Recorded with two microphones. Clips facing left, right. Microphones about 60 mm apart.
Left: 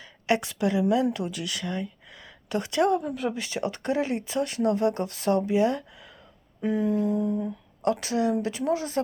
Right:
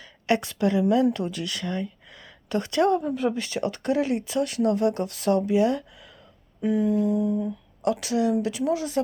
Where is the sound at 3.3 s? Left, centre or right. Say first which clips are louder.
Right 2 dB; centre.